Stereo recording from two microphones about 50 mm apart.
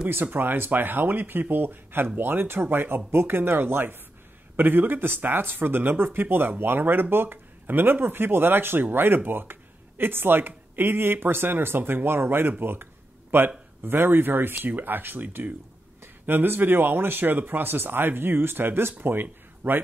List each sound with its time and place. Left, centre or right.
0.1 s speech: right